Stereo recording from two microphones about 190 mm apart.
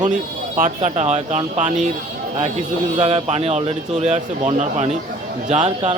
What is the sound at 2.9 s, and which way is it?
Speech, 35° right (ahead or behind).